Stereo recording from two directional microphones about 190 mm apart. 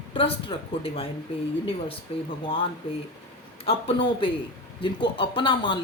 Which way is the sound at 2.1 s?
30° left (ahead or behind).